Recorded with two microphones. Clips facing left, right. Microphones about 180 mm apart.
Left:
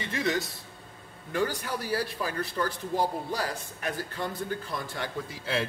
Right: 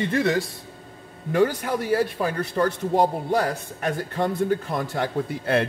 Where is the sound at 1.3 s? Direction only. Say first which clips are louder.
Right 8 dB; 50° right (ahead or behind).